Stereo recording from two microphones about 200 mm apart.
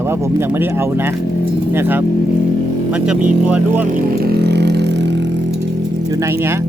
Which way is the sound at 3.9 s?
45° right (ahead or behind).